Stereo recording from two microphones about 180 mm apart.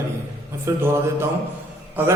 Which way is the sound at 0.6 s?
15° right (ahead or behind).